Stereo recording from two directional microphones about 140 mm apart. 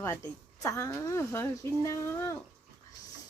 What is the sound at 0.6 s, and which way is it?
A woman's voice, 20° left (ahead or behind).